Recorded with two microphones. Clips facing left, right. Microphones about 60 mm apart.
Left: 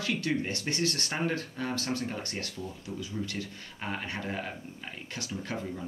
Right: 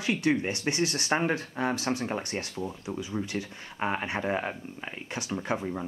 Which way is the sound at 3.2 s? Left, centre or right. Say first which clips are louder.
Right 1 dB; right.